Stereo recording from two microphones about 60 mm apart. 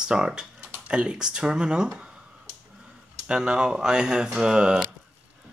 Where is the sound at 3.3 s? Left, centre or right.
Centre.